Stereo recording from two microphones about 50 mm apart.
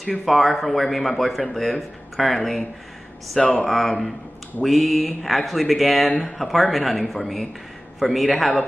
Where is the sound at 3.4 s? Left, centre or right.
Left.